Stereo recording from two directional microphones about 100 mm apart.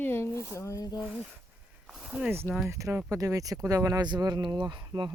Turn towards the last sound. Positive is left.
turn(degrees=-40)  # may be behind; listen again after turning